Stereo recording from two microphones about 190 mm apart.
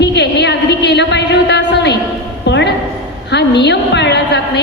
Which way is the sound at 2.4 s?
65° left (ahead or behind).